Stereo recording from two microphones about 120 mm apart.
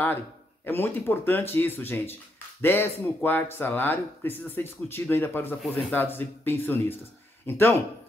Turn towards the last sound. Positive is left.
turn(degrees=15)  # may be behind; listen again after turning